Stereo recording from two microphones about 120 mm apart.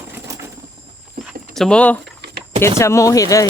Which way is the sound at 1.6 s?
10° left (ahead or behind).